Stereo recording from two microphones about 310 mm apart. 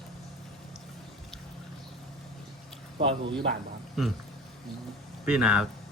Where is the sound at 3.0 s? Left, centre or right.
Centre.